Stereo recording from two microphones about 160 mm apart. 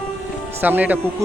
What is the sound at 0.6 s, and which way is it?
Speech, 10° right (ahead or behind).